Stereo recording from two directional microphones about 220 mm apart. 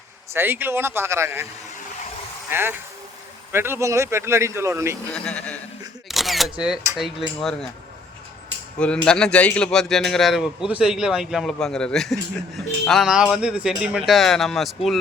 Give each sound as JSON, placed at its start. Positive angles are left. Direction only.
{"t": 0.3, "sound": "speech", "side_deg": -10}
{"t": 2.5, "sound": "speech", "side_deg": -10}
{"t": 5.1, "sound": "a man's voice", "side_deg": 5}
{"t": 6.1, "sound": "single-lens reflex camera", "side_deg": 0}
{"t": 6.9, "sound": "a man's voice", "side_deg": 0}
{"t": 8.8, "sound": "a man's voice", "side_deg": 5}